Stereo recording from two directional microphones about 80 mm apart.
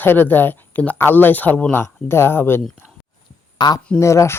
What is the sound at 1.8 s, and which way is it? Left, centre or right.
Speech, left.